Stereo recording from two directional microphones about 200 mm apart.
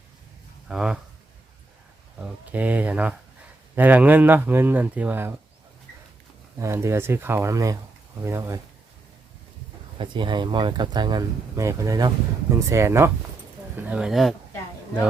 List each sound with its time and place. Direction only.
0.7 s speech: 5° right (ahead or behind)
2.2 s speech: 10° right (ahead or behind)
6.6 s speech: 15° right (ahead or behind)
10.0 s speech: 25° right (ahead or behind); by 14.3 s centre (ahead or behind)